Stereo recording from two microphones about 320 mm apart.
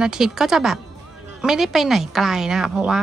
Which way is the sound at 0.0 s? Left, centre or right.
Centre.